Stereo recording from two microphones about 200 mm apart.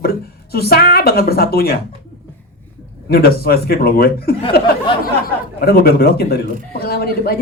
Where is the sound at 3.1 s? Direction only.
50° left (ahead or behind).